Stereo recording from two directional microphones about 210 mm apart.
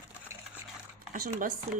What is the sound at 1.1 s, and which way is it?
Speech, 40° right (ahead or behind).